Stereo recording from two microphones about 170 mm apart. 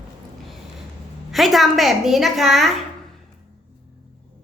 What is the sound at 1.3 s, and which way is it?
A woman's voice, centre (ahead or behind).